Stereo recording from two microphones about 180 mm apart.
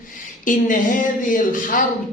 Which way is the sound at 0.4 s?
45° left (ahead or behind).